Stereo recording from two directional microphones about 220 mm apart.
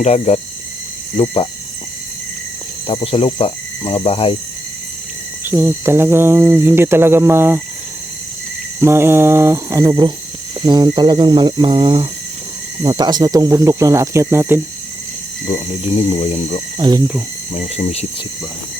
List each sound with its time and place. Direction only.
0.0 s speech: 30° left (ahead or behind)
2.8 s speech: 25° left (ahead or behind)
5.5 s cricket: 10° right (ahead or behind)
8.8 s cricket: 10° right (ahead or behind)
10.7 s a sound: 20° right (ahead or behind)
12.8 s cricket: 25° right (ahead or behind)
15.5 s speech: 30° left (ahead or behind)
16.7 s speech: 20° right (ahead or behind)
17.5 s speech: 30° left (ahead or behind)